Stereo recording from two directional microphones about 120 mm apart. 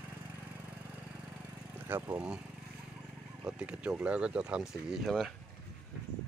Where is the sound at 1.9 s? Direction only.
20° right (ahead or behind).